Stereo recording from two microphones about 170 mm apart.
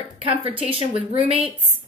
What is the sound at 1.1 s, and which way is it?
Speech, 35° right (ahead or behind).